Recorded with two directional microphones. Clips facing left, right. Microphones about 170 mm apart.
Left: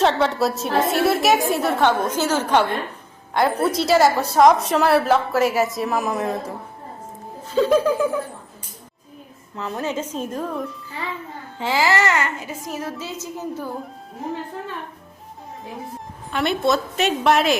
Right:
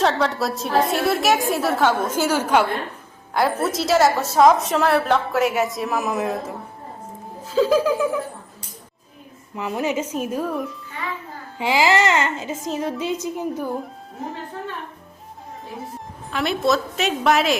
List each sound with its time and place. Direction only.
0.0 s a woman's voice: centre (ahead or behind)
7.5 s a woman's voice: centre (ahead or behind)
9.6 s child singing: 15° right (ahead or behind)
15.9 s a woman's voice: centre (ahead or behind)